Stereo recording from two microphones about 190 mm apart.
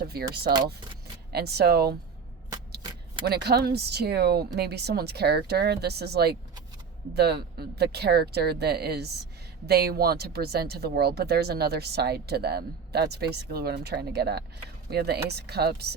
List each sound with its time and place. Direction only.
0.0 s speech: 55° right (ahead or behind)
0.5 s speech: 20° right (ahead or behind)
1.3 s speech: 60° right (ahead or behind)
3.2 s speech: 60° right (ahead or behind)